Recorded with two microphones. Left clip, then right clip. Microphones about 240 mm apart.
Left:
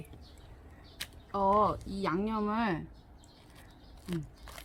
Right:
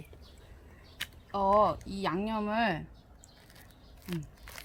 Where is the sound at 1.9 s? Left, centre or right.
Right.